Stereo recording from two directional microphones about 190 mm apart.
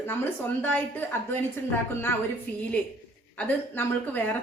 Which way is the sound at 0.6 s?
10° left (ahead or behind).